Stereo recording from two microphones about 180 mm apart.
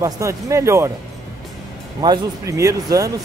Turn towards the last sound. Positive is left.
turn(degrees=-15)  # may be behind; listen again after turning